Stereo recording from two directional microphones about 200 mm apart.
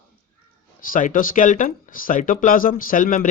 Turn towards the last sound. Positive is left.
turn(degrees=45)  # may be behind; listen again after turning